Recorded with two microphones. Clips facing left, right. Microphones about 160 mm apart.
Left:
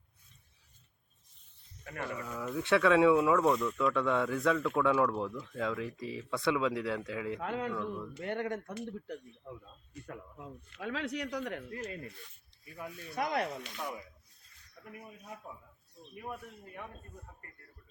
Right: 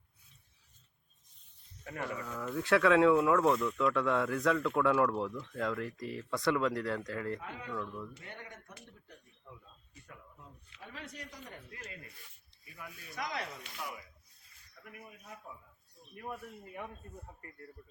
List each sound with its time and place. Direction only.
2.0 s speech: 5° left (ahead or behind)
7.3 s speech: 70° left (ahead or behind)
10.1 s speech: 90° left
12.7 s speech: 35° left (ahead or behind)
13.2 s speech: 55° left (ahead or behind)
15.5 s speech: 25° left (ahead or behind)
16.1 s speech: centre (ahead or behind)